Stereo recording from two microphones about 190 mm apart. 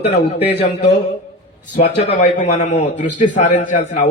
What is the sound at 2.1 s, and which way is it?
A man's voice, 35° left (ahead or behind).